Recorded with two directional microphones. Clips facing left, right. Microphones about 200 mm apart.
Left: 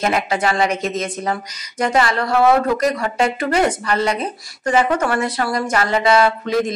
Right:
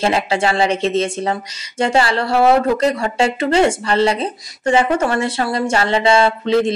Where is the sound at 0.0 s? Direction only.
30° right (ahead or behind).